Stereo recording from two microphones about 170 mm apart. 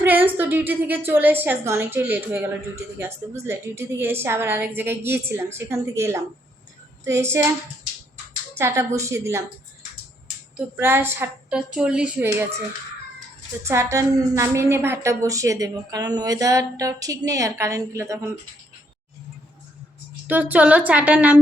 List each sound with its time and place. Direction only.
0.0 s a woman's voice: 10° right (ahead or behind)
8.5 s a woman's voice: 15° right (ahead or behind)
10.8 s a woman's voice: 15° right (ahead or behind)
13.7 s a woman's voice: 15° right (ahead or behind)
20.2 s a woman's voice: 10° right (ahead or behind)